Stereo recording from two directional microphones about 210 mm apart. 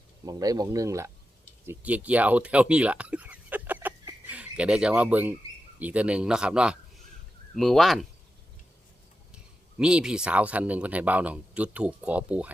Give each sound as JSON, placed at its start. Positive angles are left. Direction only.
{"t": 0.3, "sound": "speech", "side_deg": -15}
{"t": 9.3, "sound": "speech", "side_deg": -5}